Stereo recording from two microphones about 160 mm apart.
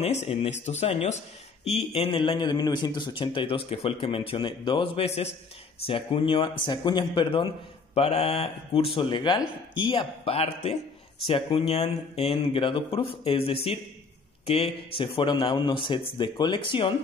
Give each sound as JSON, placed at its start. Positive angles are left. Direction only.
{"t": 0.0, "sound": "a man's voice", "side_deg": 40}
{"t": 14.4, "sound": "a man's voice", "side_deg": 35}